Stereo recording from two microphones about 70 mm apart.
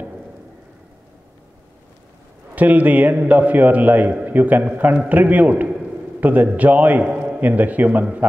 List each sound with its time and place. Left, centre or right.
2.5 s a man's voice: right